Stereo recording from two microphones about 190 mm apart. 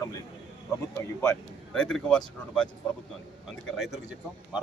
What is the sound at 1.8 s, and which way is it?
Speech, 5° left (ahead or behind).